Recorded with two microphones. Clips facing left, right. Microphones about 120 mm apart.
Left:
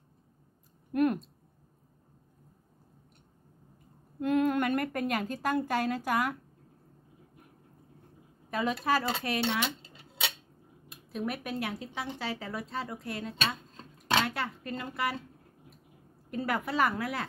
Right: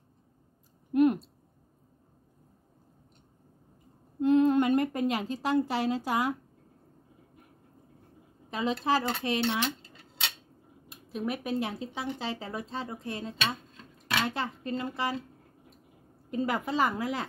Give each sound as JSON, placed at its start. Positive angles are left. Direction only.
{"t": 0.9, "sound": "speech", "side_deg": -20}
{"t": 4.2, "sound": "a woman's voice", "side_deg": -25}
{"t": 8.8, "sound": "speech", "side_deg": -25}
{"t": 11.1, "sound": "speech", "side_deg": -30}
{"t": 13.7, "sound": "dishes", "side_deg": 30}
{"t": 14.2, "sound": "speech", "side_deg": -25}
{"t": 16.3, "sound": "speech", "side_deg": -20}